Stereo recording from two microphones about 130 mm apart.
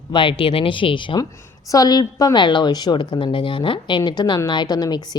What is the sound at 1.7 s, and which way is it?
A woman's voice, 30° left (ahead or behind).